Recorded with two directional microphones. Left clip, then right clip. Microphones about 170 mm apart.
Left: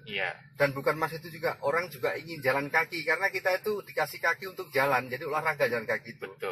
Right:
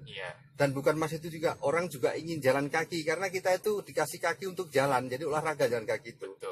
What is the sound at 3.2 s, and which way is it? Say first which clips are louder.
A man's voice: left 2 dB; 40° right (ahead or behind).